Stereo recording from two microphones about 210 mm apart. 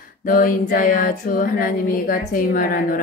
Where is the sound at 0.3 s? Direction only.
40° left (ahead or behind).